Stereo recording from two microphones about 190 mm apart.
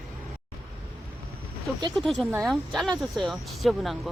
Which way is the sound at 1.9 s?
Centre (ahead or behind).